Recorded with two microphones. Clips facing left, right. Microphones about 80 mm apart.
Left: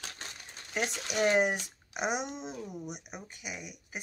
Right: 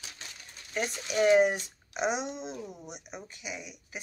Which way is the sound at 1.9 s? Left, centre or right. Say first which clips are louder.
Right 2 dB; centre.